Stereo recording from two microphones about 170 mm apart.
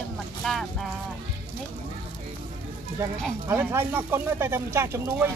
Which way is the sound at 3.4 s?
10° right (ahead or behind).